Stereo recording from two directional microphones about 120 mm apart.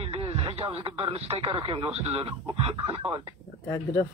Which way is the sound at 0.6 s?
45° right (ahead or behind).